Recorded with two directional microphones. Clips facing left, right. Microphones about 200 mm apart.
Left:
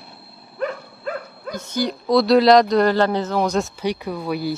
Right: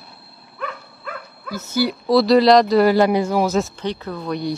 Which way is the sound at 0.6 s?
40° left (ahead or behind).